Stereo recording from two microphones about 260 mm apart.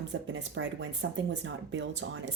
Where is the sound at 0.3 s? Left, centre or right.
Right.